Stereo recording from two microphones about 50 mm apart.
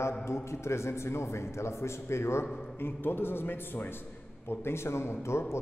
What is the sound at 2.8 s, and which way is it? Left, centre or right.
A man's voice, left.